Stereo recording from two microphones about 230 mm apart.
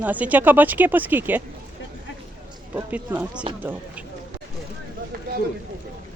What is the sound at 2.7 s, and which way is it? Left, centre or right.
Speech, centre.